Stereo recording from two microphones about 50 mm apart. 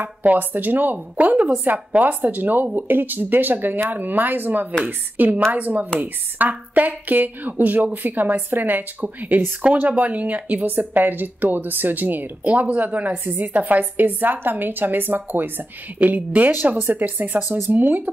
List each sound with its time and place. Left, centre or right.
0.2 s speech: right